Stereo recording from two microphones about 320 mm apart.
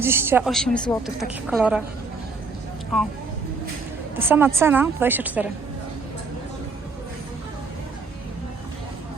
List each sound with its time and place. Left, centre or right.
0.0 s a woman's voice: centre
4.2 s a woman's voice: centre